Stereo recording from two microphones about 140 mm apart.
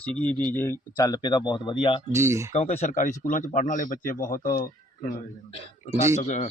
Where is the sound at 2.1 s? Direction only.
20° right (ahead or behind).